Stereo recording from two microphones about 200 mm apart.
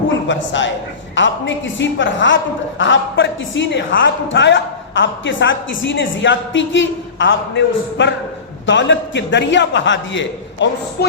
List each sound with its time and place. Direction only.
0.3 s a woman's voice: 65° left (ahead or behind)